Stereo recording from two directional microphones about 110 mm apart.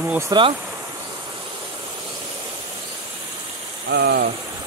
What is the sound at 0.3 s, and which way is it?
Speech, 50° right (ahead or behind).